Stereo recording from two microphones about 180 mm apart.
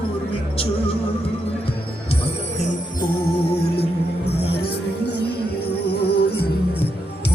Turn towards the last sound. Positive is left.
turn(degrees=60)  # may be behind; listen again after turning